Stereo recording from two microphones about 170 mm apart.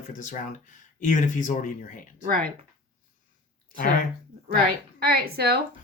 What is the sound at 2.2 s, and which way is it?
Speech, 60° right (ahead or behind).